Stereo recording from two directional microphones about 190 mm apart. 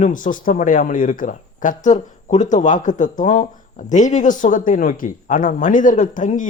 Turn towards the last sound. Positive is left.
turn(degrees=40)  # may be behind; listen again after turning